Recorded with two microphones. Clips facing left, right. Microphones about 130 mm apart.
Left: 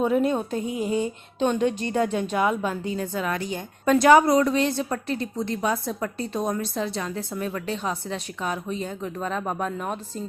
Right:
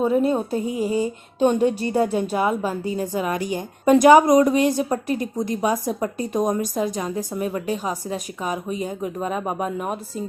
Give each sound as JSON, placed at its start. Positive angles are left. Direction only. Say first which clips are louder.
{"t": 0.0, "sound": "a woman's voice", "louder": "right 2 dB", "side_deg": -5}